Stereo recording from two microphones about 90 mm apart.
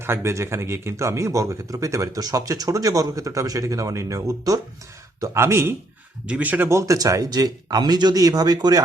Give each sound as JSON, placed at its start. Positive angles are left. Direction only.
{"t": 0.0, "sound": "speech", "side_deg": -30}
{"t": 5.2, "sound": "speech", "side_deg": -30}
{"t": 6.2, "sound": "speech", "side_deg": -15}
{"t": 6.7, "sound": "speech", "side_deg": -35}